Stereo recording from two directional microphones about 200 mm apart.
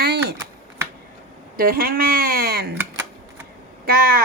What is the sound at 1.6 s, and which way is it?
A woman's voice, 50° right (ahead or behind).